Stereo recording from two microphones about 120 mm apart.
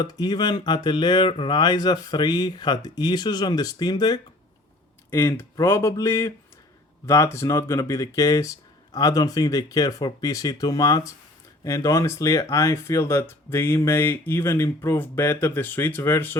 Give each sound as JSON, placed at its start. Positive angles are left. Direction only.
{"t": 0.0, "sound": "speech", "side_deg": 35}
{"t": 5.1, "sound": "speech", "side_deg": 25}